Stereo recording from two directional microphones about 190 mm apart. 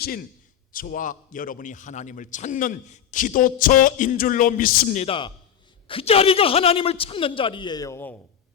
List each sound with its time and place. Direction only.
0.0 s a man's voice: 50° left (ahead or behind)
5.0 s a man's voice: 25° left (ahead or behind)